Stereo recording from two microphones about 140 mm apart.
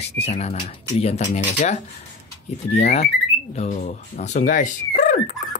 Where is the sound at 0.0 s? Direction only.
50° left (ahead or behind); by 5.3 s 65° left (ahead or behind).